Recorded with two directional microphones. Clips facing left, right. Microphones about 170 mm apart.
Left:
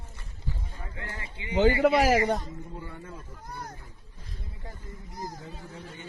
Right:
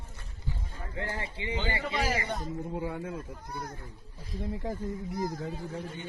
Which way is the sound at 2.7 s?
75° right (ahead or behind).